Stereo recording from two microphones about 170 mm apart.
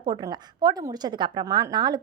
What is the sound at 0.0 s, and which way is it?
A woman's voice, 25° right (ahead or behind).